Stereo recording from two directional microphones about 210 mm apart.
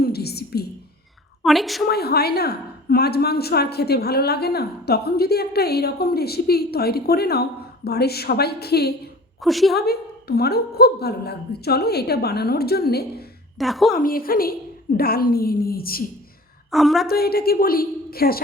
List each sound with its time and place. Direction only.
0.0 s whispering: 50° left (ahead or behind)
1.5 s a woman's voice: centre (ahead or behind)
1.9 s a woman's voice: 50° left (ahead or behind)
9.4 s a woman's voice: centre (ahead or behind)
9.7 s a woman's voice: 50° left (ahead or behind)
13.6 s a woman's voice: centre (ahead or behind)
13.9 s a woman's voice: 45° left (ahead or behind)
16.7 s a woman's voice: centre (ahead or behind)
17.1 s a woman's voice: 45° left (ahead or behind)